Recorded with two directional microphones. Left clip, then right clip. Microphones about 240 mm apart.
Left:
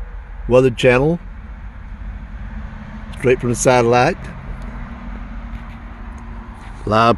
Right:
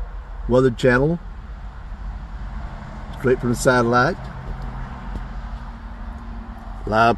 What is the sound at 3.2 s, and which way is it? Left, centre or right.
Speech, left.